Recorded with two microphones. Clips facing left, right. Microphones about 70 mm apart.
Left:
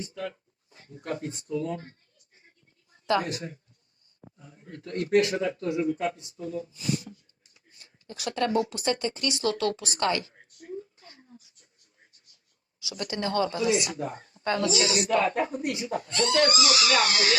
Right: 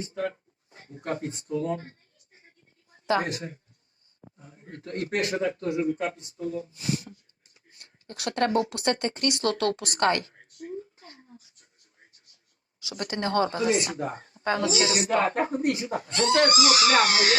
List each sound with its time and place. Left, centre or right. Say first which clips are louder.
0.1 s speech: right 5 dB; right
3.2 s speech: right 1 dB; right
12.8 s speech: right 1 dB; right